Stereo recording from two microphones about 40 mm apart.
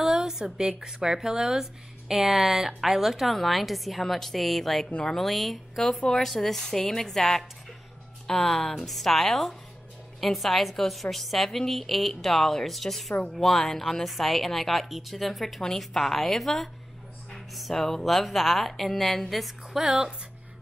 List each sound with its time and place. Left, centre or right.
0.0 s a woman's voice: centre
17.7 s a woman's voice: centre
19.8 s speech: right